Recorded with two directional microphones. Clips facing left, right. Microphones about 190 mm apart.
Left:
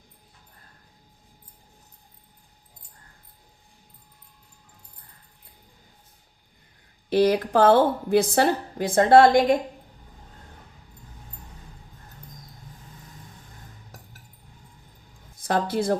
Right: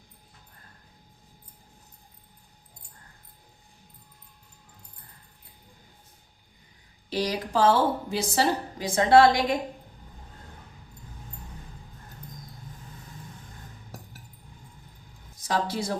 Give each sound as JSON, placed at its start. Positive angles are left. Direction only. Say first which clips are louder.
{"t": 7.1, "sound": "a woman's voice", "louder": "left 8 dB", "side_deg": 55}
{"t": 15.4, "sound": "a woman's voice", "louder": "left 4 dB", "side_deg": 55}